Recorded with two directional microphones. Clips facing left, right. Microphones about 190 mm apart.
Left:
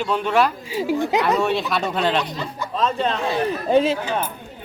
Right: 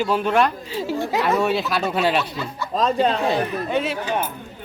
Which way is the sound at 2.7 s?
40° right (ahead or behind).